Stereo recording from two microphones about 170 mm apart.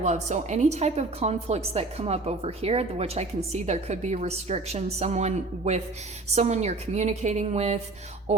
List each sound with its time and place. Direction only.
0.0 s a woman's voice: 45° right (ahead or behind)